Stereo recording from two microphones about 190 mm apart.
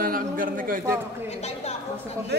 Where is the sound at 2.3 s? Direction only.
60° right (ahead or behind).